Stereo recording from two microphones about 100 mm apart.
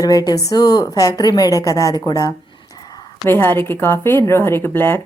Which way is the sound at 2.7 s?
40° left (ahead or behind).